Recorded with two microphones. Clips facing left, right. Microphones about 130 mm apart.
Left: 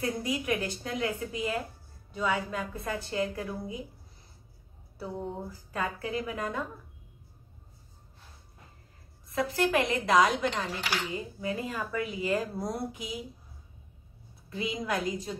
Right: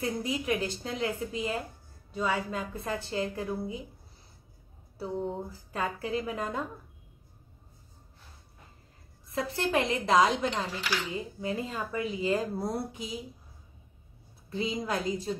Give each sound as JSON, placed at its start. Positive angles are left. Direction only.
{"t": 0.0, "sound": "a woman's voice", "side_deg": -25}
{"t": 4.9, "sound": "a woman's voice", "side_deg": -25}
{"t": 9.5, "sound": "a woman's voice", "side_deg": -25}
{"t": 14.5, "sound": "a woman's voice", "side_deg": -30}